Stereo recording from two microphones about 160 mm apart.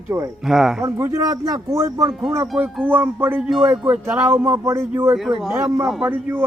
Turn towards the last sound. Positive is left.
turn(degrees=-10)  # may be behind; listen again after turning